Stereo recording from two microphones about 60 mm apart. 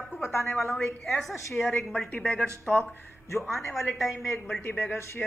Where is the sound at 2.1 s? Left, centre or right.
Left.